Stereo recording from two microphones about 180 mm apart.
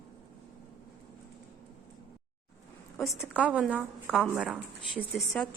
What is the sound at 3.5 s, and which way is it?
A woman's voice, 5° right (ahead or behind).